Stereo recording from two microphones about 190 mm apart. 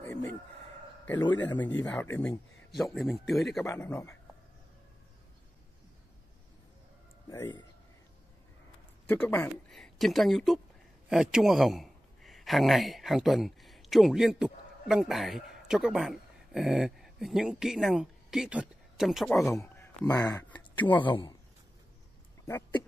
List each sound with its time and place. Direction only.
0.0 s chicken: 10° left (ahead or behind)
1.3 s speech: 10° left (ahead or behind)
3.6 s speech: 10° left (ahead or behind)
7.2 s speech: 15° left (ahead or behind)
9.0 s a man's voice: 10° left (ahead or behind)
19.4 s speech: 15° left (ahead or behind)
21.1 s a man's voice: 25° left (ahead or behind)
22.4 s a sound: 15° left (ahead or behind)